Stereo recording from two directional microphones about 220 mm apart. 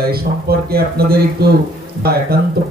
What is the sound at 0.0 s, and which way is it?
A man's voice, 45° right (ahead or behind).